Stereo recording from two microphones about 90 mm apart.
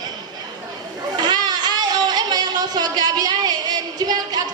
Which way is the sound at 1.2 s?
50° right (ahead or behind).